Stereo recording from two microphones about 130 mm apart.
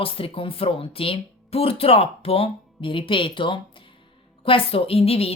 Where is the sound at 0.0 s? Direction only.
45° left (ahead or behind).